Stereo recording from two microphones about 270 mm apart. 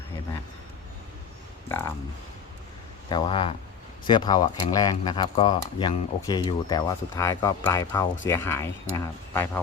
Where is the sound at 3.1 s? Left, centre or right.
Centre.